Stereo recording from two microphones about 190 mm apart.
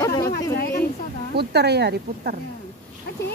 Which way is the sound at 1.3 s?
60° right (ahead or behind).